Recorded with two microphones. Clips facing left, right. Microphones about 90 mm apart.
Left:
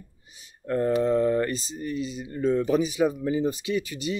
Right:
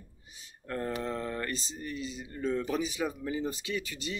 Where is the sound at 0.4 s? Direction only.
20° left (ahead or behind).